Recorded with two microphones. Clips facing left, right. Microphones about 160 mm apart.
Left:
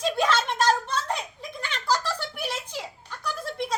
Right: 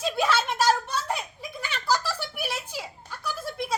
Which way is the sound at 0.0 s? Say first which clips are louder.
Left 1 dB; 5° right (ahead or behind).